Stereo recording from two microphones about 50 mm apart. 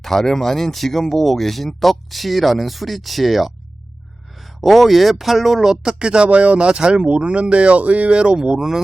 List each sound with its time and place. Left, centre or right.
0.0 s speech: centre